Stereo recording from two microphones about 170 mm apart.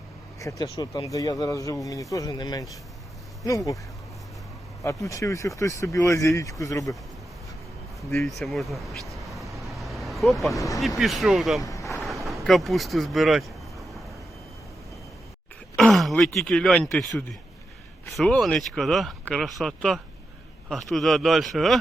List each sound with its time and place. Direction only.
0.3 s speech: 20° left (ahead or behind)
4.8 s speech: 20° left (ahead or behind)
8.2 s vehicle: centre (ahead or behind)
10.8 s speech: centre (ahead or behind)
11.6 s a sound: 20° left (ahead or behind)
11.9 s vehicle: centre (ahead or behind)
15.7 s speech: 5° left (ahead or behind)